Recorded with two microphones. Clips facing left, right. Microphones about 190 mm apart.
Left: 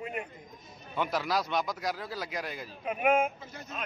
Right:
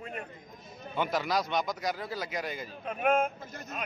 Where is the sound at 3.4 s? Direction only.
50° right (ahead or behind).